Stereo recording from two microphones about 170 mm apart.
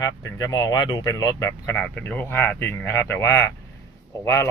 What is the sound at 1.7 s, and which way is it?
A man's voice, 10° left (ahead or behind).